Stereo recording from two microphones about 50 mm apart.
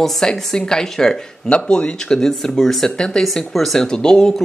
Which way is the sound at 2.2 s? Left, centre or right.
Centre.